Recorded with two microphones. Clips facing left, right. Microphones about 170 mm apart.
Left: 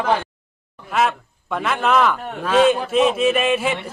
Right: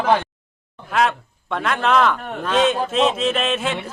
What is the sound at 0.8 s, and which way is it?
A man's voice, 5° left (ahead or behind).